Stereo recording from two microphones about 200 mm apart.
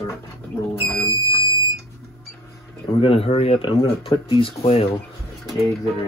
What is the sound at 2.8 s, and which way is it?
Speech, 25° left (ahead or behind).